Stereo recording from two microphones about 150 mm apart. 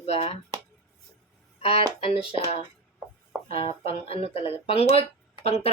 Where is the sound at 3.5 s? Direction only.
40° left (ahead or behind).